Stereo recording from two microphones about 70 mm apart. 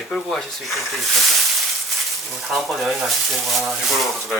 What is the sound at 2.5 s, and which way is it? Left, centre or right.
Speech, centre.